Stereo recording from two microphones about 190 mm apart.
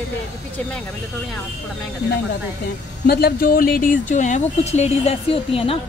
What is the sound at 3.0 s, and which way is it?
Speech, 55° left (ahead or behind).